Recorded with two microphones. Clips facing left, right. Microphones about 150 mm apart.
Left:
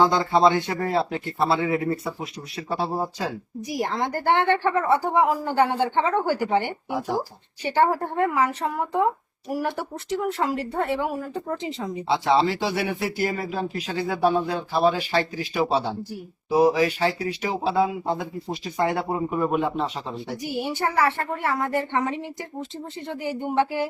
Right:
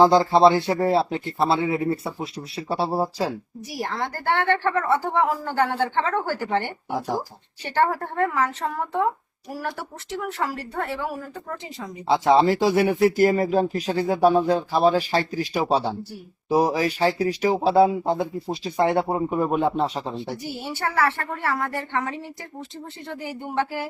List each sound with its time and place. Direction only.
0.0 s speech: 35° right (ahead or behind)
3.7 s a woman's voice: 15° left (ahead or behind)
12.0 s speech: 45° right (ahead or behind)
20.4 s a woman's voice: 15° left (ahead or behind)